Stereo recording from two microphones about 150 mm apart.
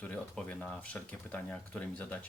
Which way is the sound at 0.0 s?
10° left (ahead or behind).